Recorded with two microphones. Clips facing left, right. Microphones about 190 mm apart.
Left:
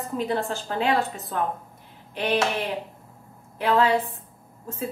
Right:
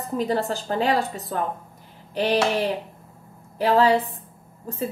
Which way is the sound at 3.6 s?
35° right (ahead or behind).